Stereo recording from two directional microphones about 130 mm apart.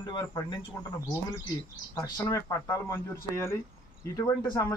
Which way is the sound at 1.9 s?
25° left (ahead or behind).